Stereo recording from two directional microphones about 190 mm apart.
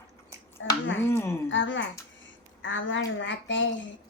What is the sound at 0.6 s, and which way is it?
Speech, 80° left.